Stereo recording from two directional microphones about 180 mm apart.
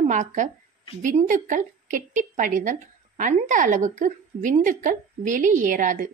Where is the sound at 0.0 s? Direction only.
45° right (ahead or behind).